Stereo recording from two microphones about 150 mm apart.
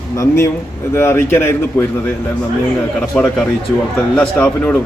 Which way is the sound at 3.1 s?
5° left (ahead or behind).